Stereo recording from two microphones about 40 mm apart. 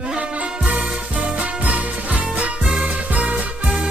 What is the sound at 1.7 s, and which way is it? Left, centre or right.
Music, right.